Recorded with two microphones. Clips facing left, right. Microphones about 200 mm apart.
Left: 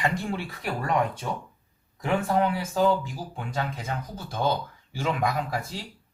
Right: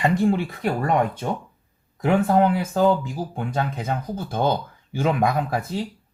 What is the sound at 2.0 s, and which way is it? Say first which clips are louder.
Speech: right 6 dB; 55° right (ahead or behind).